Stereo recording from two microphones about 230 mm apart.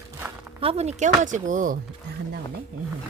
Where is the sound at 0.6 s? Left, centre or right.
Right.